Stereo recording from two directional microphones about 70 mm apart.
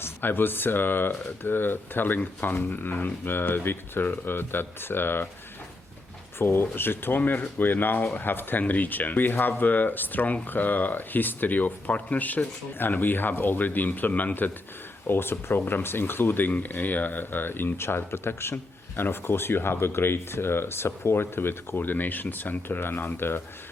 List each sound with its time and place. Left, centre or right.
0.0 s speech: left
6.4 s speech: left